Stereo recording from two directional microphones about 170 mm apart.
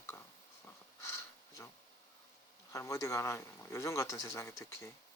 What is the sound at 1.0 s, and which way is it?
Sniff, 15° left (ahead or behind).